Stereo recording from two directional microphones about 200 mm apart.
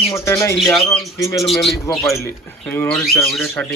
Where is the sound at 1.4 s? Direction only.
Centre (ahead or behind).